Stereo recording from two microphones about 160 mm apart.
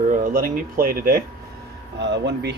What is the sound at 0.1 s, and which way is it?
Speech, 60° right (ahead or behind).